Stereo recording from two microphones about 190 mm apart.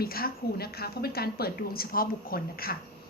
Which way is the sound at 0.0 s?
55° left (ahead or behind).